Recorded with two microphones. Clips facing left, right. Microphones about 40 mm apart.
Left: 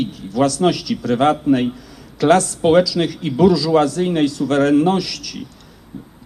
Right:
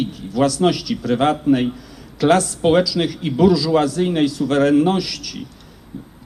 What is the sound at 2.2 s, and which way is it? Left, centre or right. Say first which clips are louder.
Speech: left 1 dB; centre.